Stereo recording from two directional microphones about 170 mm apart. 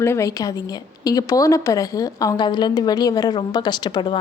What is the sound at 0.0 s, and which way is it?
A woman's voice, 15° left (ahead or behind).